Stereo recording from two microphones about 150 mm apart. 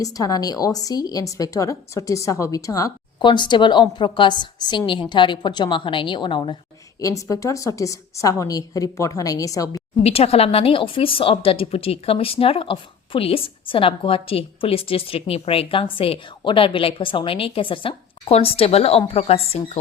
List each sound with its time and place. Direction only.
0.0 s a woman's voice: 25° left (ahead or behind)
7.0 s a woman's voice: 20° left (ahead or behind)
10.0 s speech: 40° left (ahead or behind)